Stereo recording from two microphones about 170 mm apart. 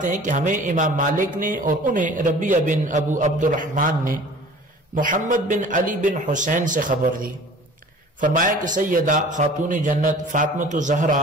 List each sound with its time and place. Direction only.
0.0 s speech: 50° right (ahead or behind)